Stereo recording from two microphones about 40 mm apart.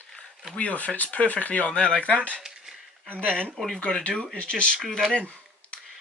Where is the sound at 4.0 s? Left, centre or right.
Left.